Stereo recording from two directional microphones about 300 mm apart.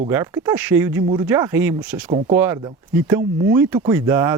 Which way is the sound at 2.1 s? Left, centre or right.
Centre.